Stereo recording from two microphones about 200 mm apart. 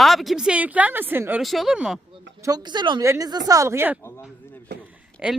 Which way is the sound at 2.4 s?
20° right (ahead or behind).